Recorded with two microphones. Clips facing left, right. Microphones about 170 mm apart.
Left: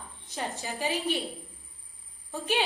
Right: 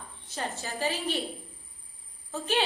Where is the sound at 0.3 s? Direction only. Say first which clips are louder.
Even; 15° left (ahead or behind).